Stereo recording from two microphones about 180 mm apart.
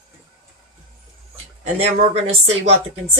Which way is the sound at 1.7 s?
35° right (ahead or behind).